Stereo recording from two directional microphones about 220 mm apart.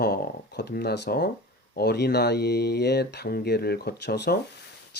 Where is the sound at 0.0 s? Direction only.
45° left (ahead or behind).